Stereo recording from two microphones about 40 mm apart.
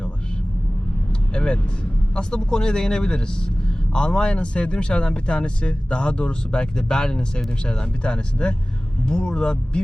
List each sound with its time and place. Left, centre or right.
1.3 s speech: left